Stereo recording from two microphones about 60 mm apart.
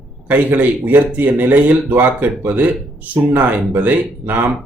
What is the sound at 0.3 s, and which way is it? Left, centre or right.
Speech, right.